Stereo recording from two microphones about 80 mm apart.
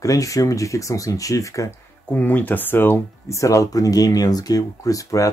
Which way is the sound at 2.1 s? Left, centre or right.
Left.